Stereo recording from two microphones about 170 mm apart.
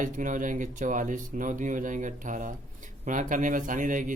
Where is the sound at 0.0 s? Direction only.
50° right (ahead or behind).